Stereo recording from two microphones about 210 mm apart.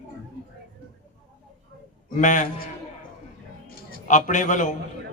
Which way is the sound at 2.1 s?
35° left (ahead or behind).